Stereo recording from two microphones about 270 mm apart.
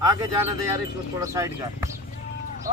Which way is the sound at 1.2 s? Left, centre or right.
Centre.